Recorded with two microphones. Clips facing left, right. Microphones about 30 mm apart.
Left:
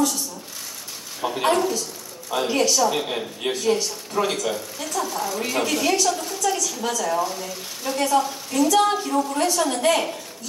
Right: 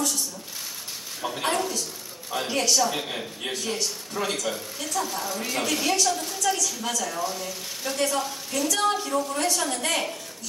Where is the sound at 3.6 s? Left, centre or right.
Left.